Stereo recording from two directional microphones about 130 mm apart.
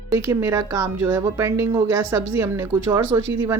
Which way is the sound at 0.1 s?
20° right (ahead or behind).